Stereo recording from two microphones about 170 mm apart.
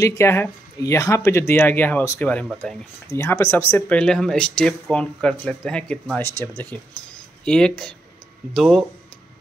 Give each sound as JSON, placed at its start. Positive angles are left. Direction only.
{"t": 0.0, "sound": "speech", "side_deg": 15}